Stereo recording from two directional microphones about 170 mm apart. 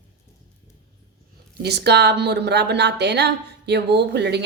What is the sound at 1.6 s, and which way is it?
A woman's voice, 75° right (ahead or behind).